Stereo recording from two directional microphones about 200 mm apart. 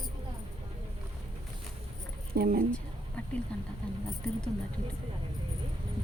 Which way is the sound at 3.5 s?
5° left (ahead or behind).